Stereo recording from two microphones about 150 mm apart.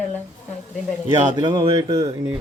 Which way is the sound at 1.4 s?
30° right (ahead or behind).